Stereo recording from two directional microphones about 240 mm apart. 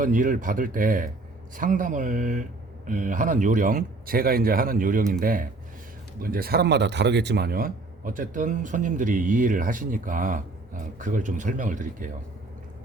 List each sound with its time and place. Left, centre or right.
0.0 s speech: right